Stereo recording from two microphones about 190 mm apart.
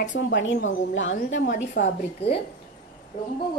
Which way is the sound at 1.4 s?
40° left (ahead or behind).